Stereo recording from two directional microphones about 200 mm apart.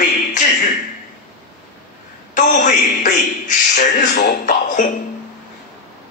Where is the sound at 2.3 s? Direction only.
40° left (ahead or behind).